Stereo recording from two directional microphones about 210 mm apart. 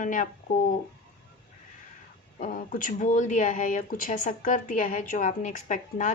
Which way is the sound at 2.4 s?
40° left (ahead or behind).